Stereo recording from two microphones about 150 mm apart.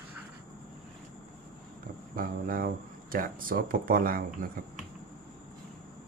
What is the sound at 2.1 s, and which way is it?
Speech, 70° right (ahead or behind).